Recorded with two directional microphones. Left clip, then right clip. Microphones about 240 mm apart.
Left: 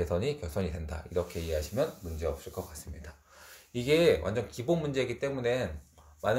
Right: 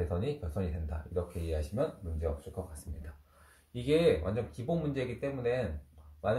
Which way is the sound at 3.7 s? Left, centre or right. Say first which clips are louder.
Left 3 dB; left.